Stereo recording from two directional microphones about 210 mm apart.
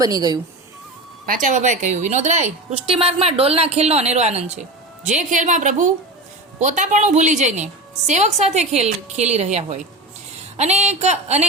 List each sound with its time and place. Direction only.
0.0 s speech: 20° right (ahead or behind)
1.3 s a woman's voice: 35° right (ahead or behind)